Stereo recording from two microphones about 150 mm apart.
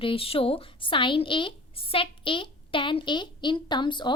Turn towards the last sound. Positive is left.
turn(degrees=30)  # may be behind; listen again after turning